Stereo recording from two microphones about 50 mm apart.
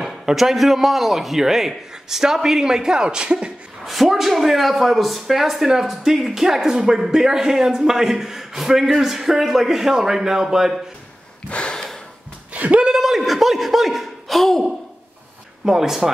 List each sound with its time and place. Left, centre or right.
0.0 s a man's voice: centre
3.8 s a man's voice: centre
11.4 s gasp: left
11.7 s gasp: centre
12.5 s a sound: right
12.9 s speech: centre
15.6 s a man's voice: centre